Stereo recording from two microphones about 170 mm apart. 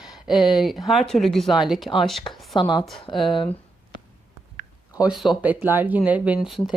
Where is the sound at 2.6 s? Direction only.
25° left (ahead or behind).